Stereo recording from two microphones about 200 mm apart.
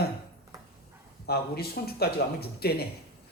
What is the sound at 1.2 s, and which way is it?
Speech, 50° left (ahead or behind).